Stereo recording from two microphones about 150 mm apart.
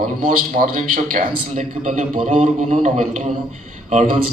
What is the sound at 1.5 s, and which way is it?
A man's voice, 55° right (ahead or behind).